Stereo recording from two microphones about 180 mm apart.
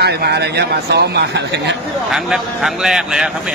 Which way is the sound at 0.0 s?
65° right (ahead or behind).